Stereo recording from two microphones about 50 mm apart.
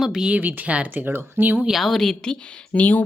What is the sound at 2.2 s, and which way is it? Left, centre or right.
Speech, left.